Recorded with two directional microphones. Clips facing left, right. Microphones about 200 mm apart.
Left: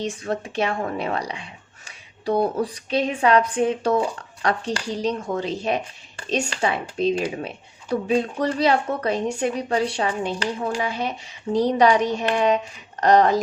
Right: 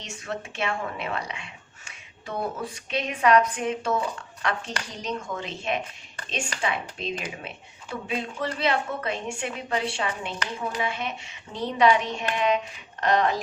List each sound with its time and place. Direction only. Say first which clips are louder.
0.0 s speech: left 8 dB; 35° left (ahead or behind)